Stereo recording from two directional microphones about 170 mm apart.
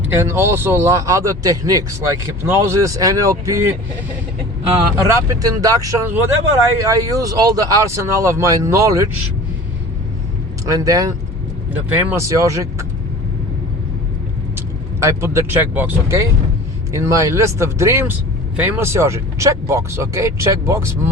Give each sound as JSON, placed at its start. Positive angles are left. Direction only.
{"t": 0.2, "sound": "speech", "side_deg": -15}
{"t": 5.0, "sound": "speech", "side_deg": -20}
{"t": 10.7, "sound": "speech", "side_deg": -20}
{"t": 11.7, "sound": "speech", "side_deg": -10}
{"t": 15.0, "sound": "speech", "side_deg": -15}